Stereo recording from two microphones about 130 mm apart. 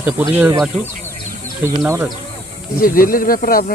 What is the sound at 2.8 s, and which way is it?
Speech, 90° left.